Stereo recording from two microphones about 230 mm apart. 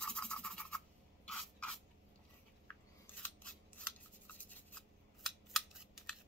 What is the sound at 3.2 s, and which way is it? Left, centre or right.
Scissors, centre.